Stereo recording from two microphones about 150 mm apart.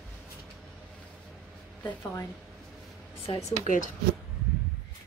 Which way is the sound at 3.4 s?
60° left (ahead or behind).